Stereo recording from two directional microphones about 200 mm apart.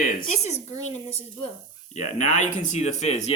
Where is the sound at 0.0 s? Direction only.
40° left (ahead or behind).